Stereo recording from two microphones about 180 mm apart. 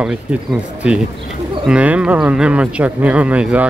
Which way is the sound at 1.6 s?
5° right (ahead or behind).